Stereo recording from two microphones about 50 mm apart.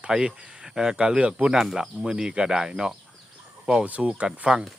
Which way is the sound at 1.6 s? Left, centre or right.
Centre.